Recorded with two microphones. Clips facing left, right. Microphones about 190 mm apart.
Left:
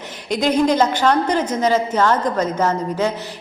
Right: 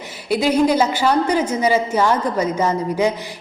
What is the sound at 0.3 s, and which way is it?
A woman's voice, 10° right (ahead or behind).